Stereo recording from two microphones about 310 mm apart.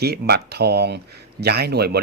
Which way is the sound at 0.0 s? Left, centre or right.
Right.